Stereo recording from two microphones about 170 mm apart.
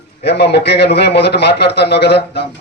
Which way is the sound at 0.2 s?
75° left (ahead or behind).